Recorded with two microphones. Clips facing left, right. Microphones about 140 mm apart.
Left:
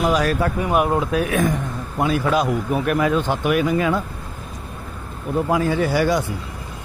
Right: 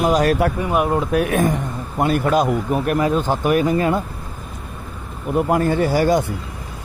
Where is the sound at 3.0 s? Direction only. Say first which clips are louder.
Right 1 dB; 40° right (ahead or behind).